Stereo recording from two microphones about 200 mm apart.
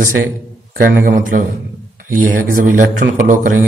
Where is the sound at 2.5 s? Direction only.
45° right (ahead or behind).